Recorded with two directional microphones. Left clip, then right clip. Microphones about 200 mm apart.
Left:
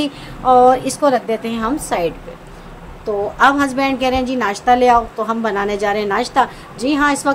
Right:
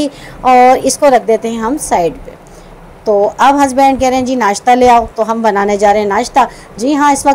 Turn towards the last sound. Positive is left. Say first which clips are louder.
# right 6 dB
turn(degrees=-20)  # may be behind; listen again after turning